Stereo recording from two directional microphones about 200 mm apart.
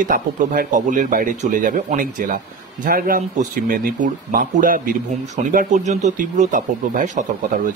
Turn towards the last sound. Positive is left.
turn(degrees=-40)  # may be behind; listen again after turning